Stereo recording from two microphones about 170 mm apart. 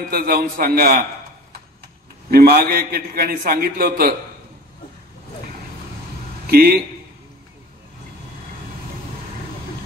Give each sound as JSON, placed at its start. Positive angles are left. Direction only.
{"t": 0.1, "sound": "a man's voice", "side_deg": -65}
{"t": 2.3, "sound": "a man's voice", "side_deg": -60}
{"t": 6.4, "sound": "speech", "side_deg": -60}